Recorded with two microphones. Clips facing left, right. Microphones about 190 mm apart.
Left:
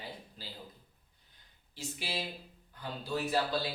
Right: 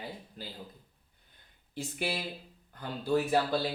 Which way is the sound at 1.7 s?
55° right (ahead or behind).